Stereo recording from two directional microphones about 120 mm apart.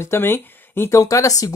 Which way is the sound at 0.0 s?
20° left (ahead or behind).